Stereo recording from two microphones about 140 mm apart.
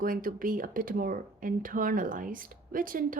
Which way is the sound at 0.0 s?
85° right.